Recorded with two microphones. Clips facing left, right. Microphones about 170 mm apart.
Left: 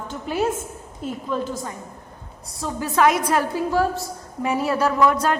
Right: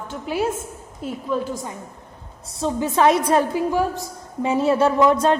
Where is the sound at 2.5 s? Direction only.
25° right (ahead or behind).